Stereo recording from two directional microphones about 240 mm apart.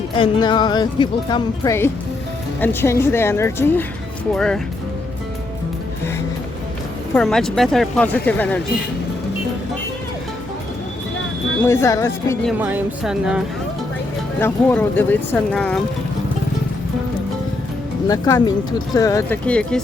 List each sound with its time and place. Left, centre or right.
0.2 s speech: centre
7.1 s speech: centre
11.6 s speech: centre
12.5 s speech: centre
14.3 s speech: centre
18.1 s speech: centre